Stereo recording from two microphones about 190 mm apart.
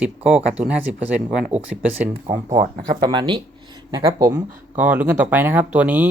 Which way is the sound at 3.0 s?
25° right (ahead or behind).